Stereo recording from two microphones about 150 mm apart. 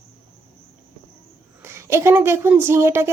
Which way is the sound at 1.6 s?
20° right (ahead or behind).